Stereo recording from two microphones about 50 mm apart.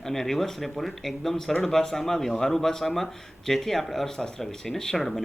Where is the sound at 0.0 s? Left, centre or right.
Centre.